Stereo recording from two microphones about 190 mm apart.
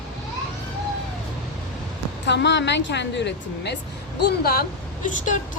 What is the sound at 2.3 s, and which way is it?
A woman's voice, 65° left (ahead or behind).